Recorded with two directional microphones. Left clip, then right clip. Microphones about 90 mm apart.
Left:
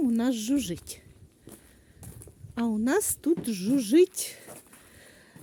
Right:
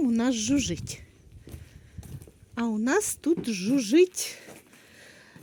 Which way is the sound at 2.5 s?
40° left (ahead or behind).